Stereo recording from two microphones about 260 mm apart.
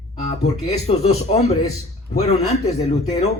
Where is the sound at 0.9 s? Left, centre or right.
Left.